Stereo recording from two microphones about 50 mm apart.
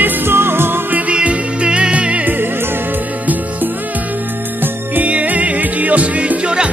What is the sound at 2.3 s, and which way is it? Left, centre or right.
Music, right.